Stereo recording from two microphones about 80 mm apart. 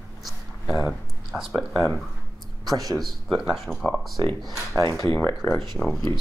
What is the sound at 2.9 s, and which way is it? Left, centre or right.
Speech, centre.